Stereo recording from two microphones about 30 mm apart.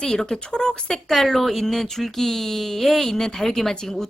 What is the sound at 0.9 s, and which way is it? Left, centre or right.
Speech, centre.